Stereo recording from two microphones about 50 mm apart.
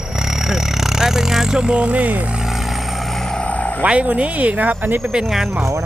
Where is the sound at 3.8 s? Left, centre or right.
Right.